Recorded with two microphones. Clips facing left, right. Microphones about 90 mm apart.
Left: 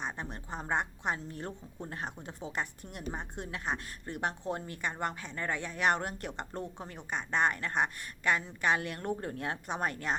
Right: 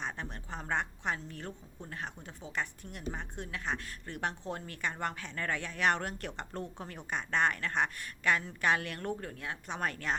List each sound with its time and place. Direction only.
0.0 s a sound: 15° left (ahead or behind)
0.5 s a woman's voice: 10° left (ahead or behind)
1.3 s a woman's voice: 25° left (ahead or behind)
7.1 s a woman's voice: centre (ahead or behind)
9.0 s speech: 30° left (ahead or behind)
9.6 s a woman's voice: 10° left (ahead or behind)